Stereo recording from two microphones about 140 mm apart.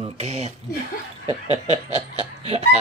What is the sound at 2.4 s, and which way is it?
Speech, 50° right (ahead or behind).